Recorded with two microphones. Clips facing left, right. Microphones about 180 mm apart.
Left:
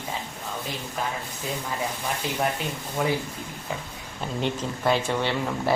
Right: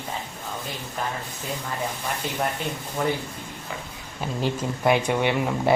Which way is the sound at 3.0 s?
5° left (ahead or behind).